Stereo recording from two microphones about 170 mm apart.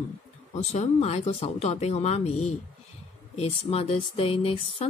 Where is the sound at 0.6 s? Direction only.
40° left (ahead or behind).